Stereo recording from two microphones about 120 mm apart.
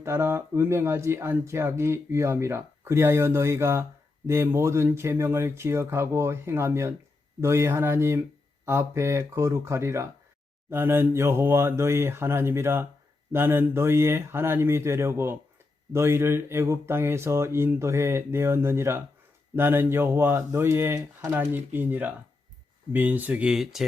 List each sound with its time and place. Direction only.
0.0 s speech: 20° right (ahead or behind); by 23.8 s 5° right (ahead or behind)